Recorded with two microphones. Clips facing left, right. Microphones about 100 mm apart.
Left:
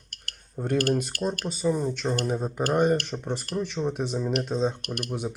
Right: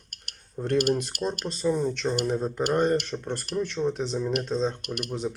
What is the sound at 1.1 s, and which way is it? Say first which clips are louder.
Speech: left 1 dB; 20° right (ahead or behind).